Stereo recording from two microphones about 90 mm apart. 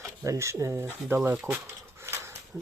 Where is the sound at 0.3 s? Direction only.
35° right (ahead or behind).